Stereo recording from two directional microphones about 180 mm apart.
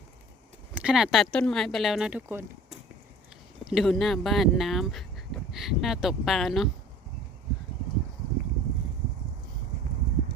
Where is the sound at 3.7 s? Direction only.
Centre (ahead or behind).